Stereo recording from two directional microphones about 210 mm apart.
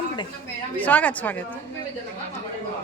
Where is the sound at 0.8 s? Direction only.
5° left (ahead or behind).